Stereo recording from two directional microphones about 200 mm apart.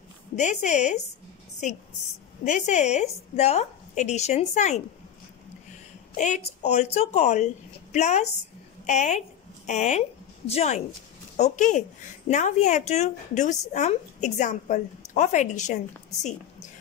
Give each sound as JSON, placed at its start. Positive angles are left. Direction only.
{"t": 0.4, "sound": "a woman's voice", "side_deg": 35}
{"t": 2.4, "sound": "a woman's voice", "side_deg": 35}
{"t": 6.1, "sound": "a woman's voice", "side_deg": 35}